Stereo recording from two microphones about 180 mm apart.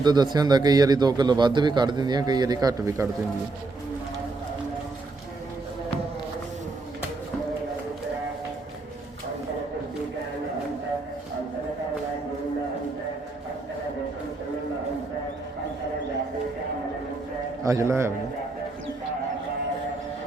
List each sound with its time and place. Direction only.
0.0 s speech: 25° right (ahead or behind)
17.6 s a man's voice: 15° right (ahead or behind)